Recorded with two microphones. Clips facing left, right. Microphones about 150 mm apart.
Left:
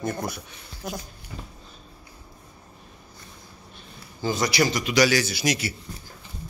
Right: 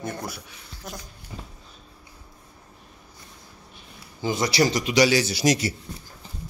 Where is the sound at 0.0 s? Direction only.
Centre (ahead or behind).